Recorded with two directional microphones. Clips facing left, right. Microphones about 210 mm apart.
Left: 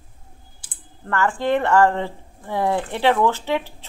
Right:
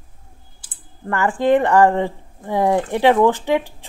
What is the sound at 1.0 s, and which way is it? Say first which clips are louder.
Speech: right 4 dB; 15° right (ahead or behind).